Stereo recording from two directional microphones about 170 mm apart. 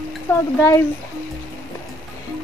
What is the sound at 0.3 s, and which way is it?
Speech, 15° left (ahead or behind).